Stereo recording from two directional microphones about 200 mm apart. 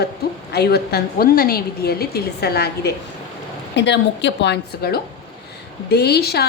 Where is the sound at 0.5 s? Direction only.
55° left (ahead or behind).